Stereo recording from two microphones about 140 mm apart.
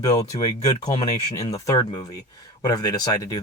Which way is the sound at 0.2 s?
30° left (ahead or behind).